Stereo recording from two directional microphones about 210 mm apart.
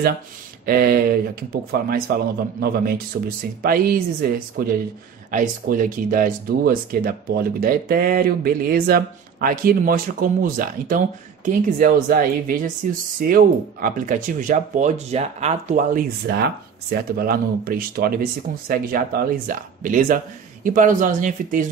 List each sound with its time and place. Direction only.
0.7 s speech: 45° right (ahead or behind)